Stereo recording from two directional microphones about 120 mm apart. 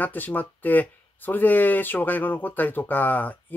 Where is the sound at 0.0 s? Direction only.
15° left (ahead or behind).